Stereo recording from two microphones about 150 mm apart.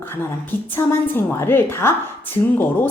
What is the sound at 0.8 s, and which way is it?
A woman's voice, 15° left (ahead or behind).